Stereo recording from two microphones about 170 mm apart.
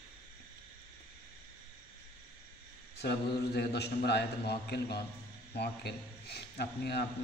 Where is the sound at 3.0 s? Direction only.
75° left (ahead or behind).